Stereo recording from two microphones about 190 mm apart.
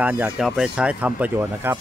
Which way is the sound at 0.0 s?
10° right (ahead or behind).